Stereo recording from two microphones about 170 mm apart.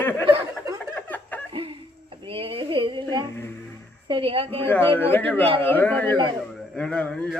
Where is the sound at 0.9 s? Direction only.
10° left (ahead or behind).